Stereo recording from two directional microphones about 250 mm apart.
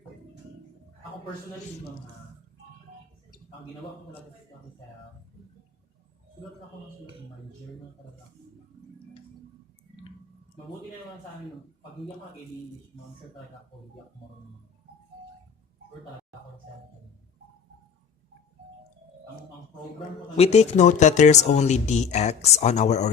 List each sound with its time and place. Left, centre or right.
20.3 s speech: left